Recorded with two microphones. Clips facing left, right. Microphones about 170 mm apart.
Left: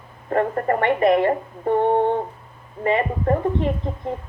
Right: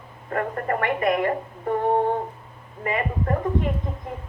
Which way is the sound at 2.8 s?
30° left (ahead or behind).